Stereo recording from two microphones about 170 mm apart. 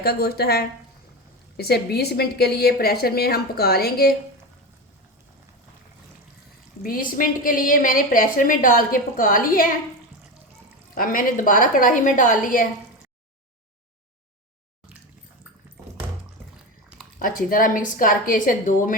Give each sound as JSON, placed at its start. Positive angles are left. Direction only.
{"t": 0.0, "sound": "a woman's voice", "side_deg": 65}
{"t": 6.8, "sound": "a woman's voice", "side_deg": 55}
{"t": 10.9, "sound": "a woman's voice", "side_deg": 55}
{"t": 17.2, "sound": "a woman's voice", "side_deg": 55}